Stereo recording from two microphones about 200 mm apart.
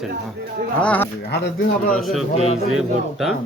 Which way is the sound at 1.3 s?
60° left (ahead or behind).